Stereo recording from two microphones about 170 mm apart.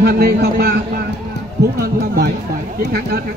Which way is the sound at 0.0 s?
65° right (ahead or behind).